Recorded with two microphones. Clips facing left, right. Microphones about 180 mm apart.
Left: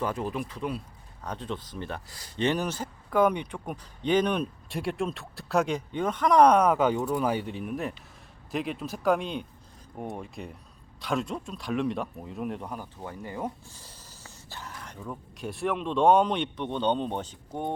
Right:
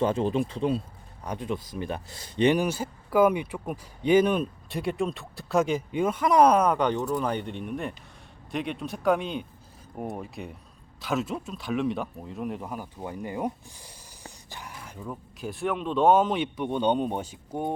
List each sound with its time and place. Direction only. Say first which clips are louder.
0.0 s speech: right 6 dB; 25° right (ahead or behind)
1.2 s speech: right 3 dB; 10° right (ahead or behind)
2.0 s speech: right 5 dB; 25° right (ahead or behind)